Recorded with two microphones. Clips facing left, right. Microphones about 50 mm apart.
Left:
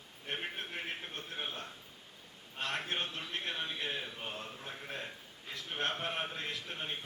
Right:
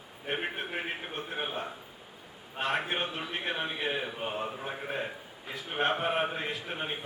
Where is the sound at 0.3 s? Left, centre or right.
Right.